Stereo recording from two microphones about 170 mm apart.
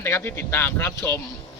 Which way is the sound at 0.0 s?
15° left (ahead or behind).